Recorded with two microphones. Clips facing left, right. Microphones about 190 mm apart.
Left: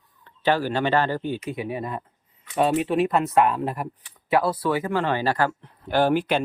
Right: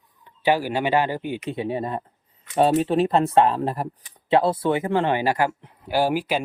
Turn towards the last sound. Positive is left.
turn(degrees=-10)  # may be behind; listen again after turning